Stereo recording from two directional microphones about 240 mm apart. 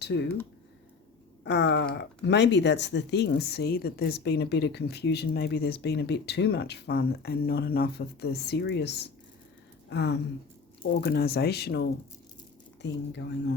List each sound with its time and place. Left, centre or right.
0.0 s speech: left
1.5 s a woman's voice: left